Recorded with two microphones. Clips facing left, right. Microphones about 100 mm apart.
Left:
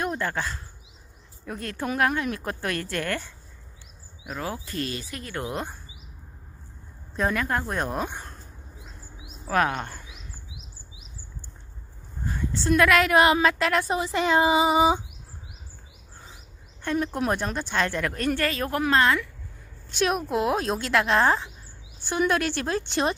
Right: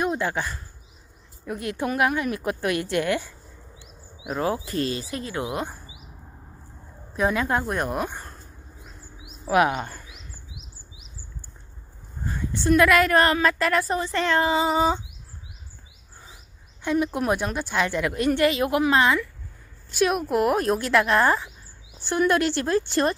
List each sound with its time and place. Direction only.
0.0 s a woman's voice: 15° right (ahead or behind)
4.3 s speech: 30° right (ahead or behind)
5.3 s a woman's voice: 10° right (ahead or behind)
7.2 s a woman's voice: 15° right (ahead or behind)
7.7 s a woman's voice: 5° right (ahead or behind)
9.5 s speech: 15° right (ahead or behind)
12.4 s a woman's voice: 5° right (ahead or behind)
16.9 s a woman's voice: 5° right (ahead or behind)